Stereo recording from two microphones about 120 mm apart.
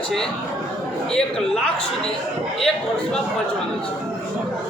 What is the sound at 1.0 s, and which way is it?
Speech, 5° left (ahead or behind).